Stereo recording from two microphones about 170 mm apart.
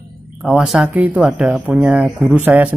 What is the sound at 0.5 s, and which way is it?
Speech, 5° right (ahead or behind).